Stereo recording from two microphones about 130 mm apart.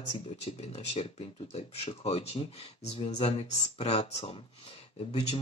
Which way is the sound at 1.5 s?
50° left (ahead or behind).